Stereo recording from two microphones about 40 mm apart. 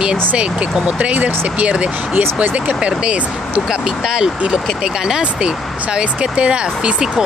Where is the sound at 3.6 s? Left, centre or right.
Centre.